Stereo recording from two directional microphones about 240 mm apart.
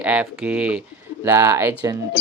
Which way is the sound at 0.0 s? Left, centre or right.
Centre.